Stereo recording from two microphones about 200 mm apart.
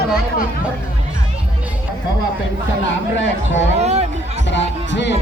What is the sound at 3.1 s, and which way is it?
Speech, 65° left (ahead or behind).